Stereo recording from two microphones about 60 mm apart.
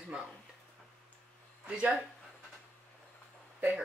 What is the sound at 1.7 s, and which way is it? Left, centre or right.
Speech, centre.